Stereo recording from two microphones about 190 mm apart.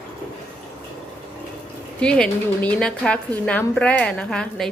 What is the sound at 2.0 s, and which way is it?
A woman's voice, 5° left (ahead or behind).